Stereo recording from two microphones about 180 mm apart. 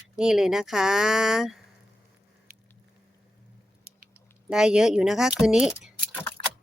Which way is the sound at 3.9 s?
35° right (ahead or behind).